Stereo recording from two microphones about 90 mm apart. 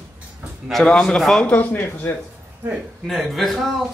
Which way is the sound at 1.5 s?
20° left (ahead or behind).